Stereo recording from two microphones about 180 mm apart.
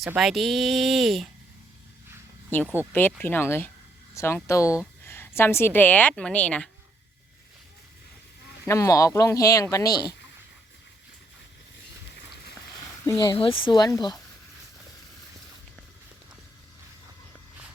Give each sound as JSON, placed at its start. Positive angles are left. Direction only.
{"t": 0.1, "sound": "speech", "side_deg": 0}
{"t": 2.9, "sound": "a woman's voice", "side_deg": 10}
{"t": 8.6, "sound": "speech", "side_deg": 15}
{"t": 13.1, "sound": "speech", "side_deg": 25}